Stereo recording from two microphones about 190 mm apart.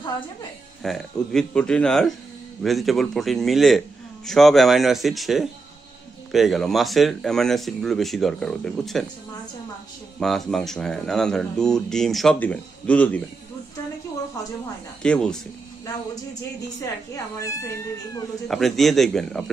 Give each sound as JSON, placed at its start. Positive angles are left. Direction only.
{"t": 0.8, "sound": "speech", "side_deg": 0}
{"t": 10.2, "sound": "speech", "side_deg": 0}
{"t": 15.0, "sound": "speech", "side_deg": 5}
{"t": 17.1, "sound": "speech", "side_deg": 15}
{"t": 18.5, "sound": "speech", "side_deg": 0}